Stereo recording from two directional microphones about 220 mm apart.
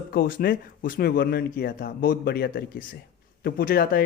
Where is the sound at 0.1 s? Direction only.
40° left (ahead or behind).